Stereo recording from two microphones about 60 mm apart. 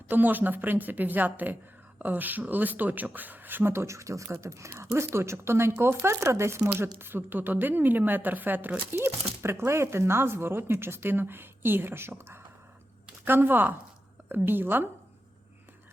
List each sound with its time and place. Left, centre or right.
0.1 s a woman's voice: right
7.0 s speech: right
9.0 s speech: right